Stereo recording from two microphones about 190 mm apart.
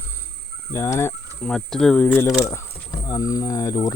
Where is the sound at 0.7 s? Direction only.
15° left (ahead or behind).